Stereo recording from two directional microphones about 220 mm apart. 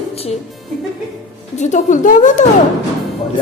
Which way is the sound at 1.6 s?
35° left (ahead or behind).